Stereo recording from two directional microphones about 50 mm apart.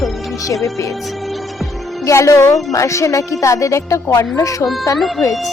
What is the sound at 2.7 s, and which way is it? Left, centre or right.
Music, left.